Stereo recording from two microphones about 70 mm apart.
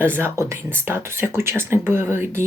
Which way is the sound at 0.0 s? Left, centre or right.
Right.